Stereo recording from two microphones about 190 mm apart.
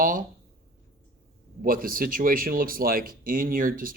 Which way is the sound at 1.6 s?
50° right (ahead or behind).